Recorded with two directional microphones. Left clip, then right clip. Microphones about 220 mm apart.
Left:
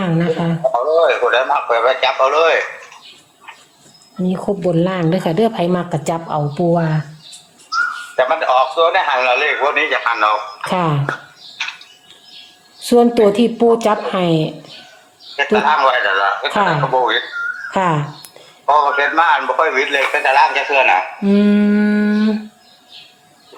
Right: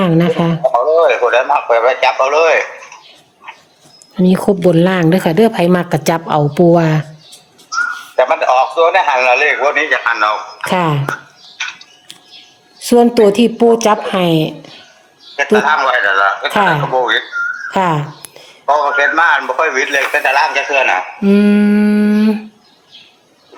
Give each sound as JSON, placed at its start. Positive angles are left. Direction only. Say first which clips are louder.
{"t": 0.0, "sound": "speech", "louder": "right 5 dB", "side_deg": -55}
{"t": 0.7, "sound": "a man's voice", "louder": "right 3 dB", "side_deg": -25}
{"t": 4.2, "sound": "a woman's voice", "louder": "right 7 dB", "side_deg": -50}
{"t": 6.2, "sound": "speech", "louder": "right 9 dB", "side_deg": -55}
{"t": 7.7, "sound": "a man's voice", "louder": "right 1 dB", "side_deg": -30}
{"t": 11.5, "sound": "a sound", "louder": "right 2 dB", "side_deg": -25}
{"t": 12.8, "sound": "a man's voice", "louder": "right 2 dB", "side_deg": -25}